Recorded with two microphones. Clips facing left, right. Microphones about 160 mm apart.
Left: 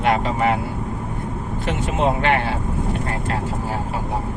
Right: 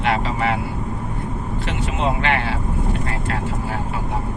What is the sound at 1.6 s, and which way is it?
Speech, 50° left (ahead or behind).